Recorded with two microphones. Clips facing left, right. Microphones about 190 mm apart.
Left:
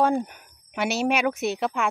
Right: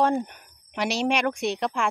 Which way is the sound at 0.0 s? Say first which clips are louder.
Left 1 dB; 5° left (ahead or behind).